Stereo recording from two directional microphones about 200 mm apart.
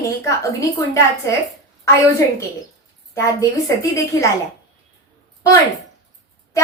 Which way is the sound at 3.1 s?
15° left (ahead or behind).